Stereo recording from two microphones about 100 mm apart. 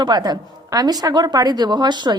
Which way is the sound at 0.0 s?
45° right (ahead or behind).